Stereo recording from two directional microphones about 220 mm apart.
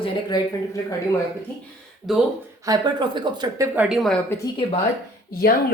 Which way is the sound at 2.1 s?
Centre (ahead or behind).